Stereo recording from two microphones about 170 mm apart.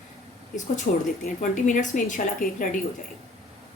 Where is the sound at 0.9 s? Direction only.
50° left (ahead or behind).